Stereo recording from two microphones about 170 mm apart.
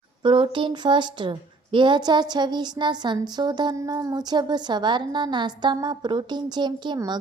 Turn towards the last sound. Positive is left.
turn(degrees=-25)  # may be behind; listen again after turning